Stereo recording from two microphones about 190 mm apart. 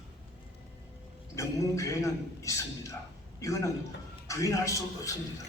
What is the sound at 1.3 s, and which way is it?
A man's voice, 15° left (ahead or behind).